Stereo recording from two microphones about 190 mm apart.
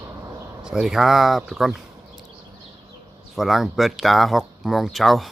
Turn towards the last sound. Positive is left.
turn(degrees=0)  # may be behind; listen again after turning